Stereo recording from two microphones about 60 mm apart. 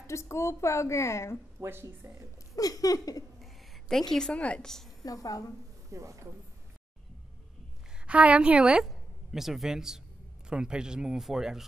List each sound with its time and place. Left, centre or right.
0.0 s a woman's voice: left
1.6 s speech: right
2.5 s a sound: left
3.3 s a sound: centre
4.3 s a woman's voice: centre
4.6 s a woman's voice: centre
5.0 s a sound: left
5.9 s speech: right
8.1 s a woman's voice: right
8.8 s a woman's voice: centre